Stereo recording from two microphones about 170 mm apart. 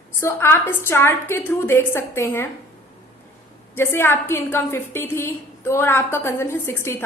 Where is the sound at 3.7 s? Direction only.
15° left (ahead or behind).